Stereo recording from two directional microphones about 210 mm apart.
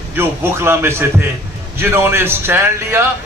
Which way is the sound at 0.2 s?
10° right (ahead or behind).